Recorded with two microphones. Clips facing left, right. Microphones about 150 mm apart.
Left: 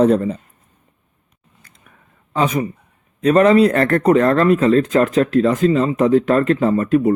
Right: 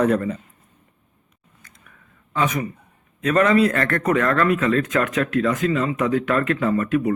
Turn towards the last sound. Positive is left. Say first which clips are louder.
# left 5 dB
turn(degrees=30)  # may be behind; listen again after turning